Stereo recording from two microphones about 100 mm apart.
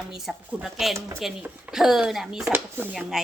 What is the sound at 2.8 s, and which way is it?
Speech, 25° right (ahead or behind).